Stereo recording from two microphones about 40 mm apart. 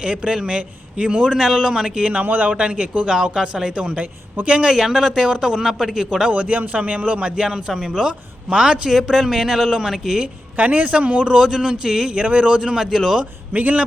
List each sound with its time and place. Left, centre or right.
0.0 s a man's voice: right
2.2 s a man's voice: right
2.5 s a man's voice: right
3.1 s a man's voice: centre
4.7 s a man's voice: centre
6.3 s a man's voice: right; by 10.2 s centre
10.6 s speech: right
10.9 s a man's voice: right
12.1 s speech: right
12.5 s a man's voice: right
13.5 s speech: right